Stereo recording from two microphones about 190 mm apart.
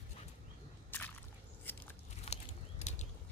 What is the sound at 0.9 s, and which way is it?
Whip, 10° left (ahead or behind).